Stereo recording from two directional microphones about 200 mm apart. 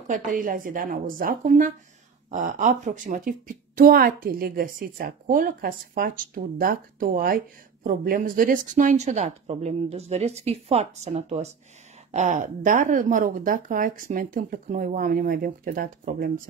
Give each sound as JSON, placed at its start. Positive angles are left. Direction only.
{"t": 0.1, "sound": "a woman's voice", "side_deg": -40}